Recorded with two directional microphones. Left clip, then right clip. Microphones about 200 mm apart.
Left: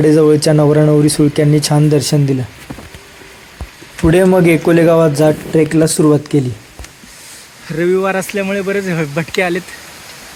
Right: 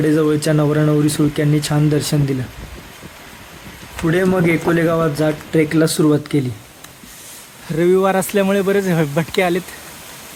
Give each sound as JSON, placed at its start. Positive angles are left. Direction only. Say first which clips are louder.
{"t": 0.0, "sound": "speech", "louder": "left 6 dB", "side_deg": 15}
{"t": 4.0, "sound": "speech", "louder": "left 6 dB", "side_deg": 20}
{"t": 5.5, "sound": "speech", "louder": "even", "side_deg": 10}
{"t": 7.7, "sound": "speech", "louder": "left 1 dB", "side_deg": -5}
{"t": 8.4, "sound": "speech", "louder": "right 1 dB", "side_deg": -25}